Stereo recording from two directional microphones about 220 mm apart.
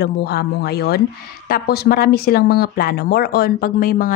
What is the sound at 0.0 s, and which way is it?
Speech, 45° left (ahead or behind).